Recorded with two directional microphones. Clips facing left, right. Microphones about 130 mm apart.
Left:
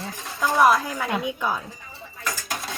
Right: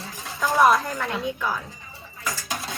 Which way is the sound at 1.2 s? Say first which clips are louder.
Left 1 dB; 20° left (ahead or behind).